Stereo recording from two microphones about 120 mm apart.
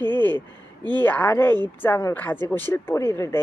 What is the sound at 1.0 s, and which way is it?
Speech, 15° left (ahead or behind).